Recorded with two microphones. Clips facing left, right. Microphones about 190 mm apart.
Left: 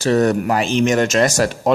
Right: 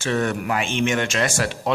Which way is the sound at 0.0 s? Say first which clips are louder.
Left 7 dB; 40° left (ahead or behind).